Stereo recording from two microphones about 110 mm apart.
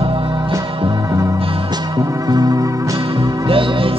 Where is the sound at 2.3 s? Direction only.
35° right (ahead or behind).